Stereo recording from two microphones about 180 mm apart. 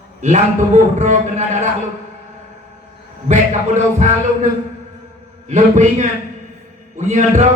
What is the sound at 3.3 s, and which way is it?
Music, 40° right (ahead or behind).